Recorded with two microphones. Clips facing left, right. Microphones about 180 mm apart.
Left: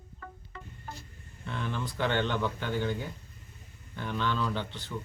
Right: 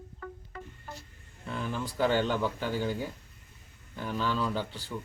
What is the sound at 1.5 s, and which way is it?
Speech, 5° right (ahead or behind).